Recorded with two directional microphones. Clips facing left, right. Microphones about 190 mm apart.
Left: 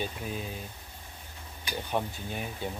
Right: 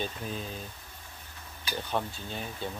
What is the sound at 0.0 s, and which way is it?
Speech, 10° left (ahead or behind).